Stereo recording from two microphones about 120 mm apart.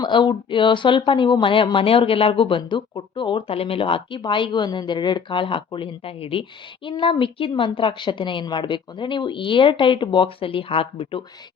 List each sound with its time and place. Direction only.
0.0 s a woman's voice: 40° left (ahead or behind)